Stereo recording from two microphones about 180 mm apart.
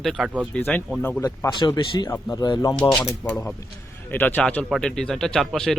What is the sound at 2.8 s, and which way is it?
Speech, 15° left (ahead or behind).